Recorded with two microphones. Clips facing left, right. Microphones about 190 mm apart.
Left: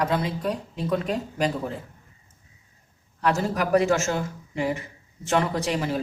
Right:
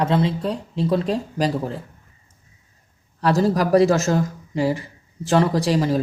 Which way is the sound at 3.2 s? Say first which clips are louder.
Right 6 dB; 35° right (ahead or behind).